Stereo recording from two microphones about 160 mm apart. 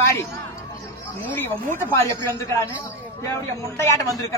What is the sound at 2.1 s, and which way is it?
A man's voice, 20° left (ahead or behind).